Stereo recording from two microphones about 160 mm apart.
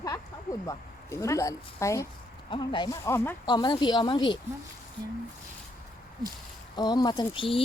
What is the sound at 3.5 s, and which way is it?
Speech, 30° left (ahead or behind).